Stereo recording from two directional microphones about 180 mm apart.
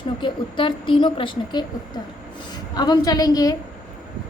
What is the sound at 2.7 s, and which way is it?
Speech, 20° left (ahead or behind).